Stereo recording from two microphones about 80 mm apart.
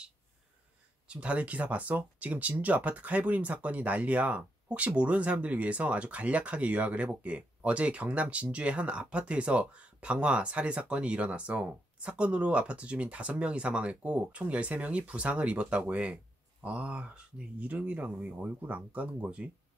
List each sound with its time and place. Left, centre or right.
1.0 s speech: centre